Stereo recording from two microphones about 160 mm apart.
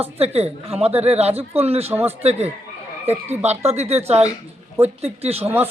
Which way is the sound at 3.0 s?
40° right (ahead or behind).